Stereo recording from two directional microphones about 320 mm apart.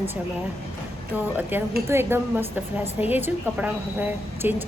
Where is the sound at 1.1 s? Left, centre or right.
Centre.